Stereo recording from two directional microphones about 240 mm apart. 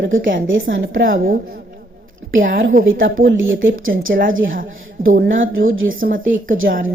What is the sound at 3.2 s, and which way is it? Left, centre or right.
Speech, right.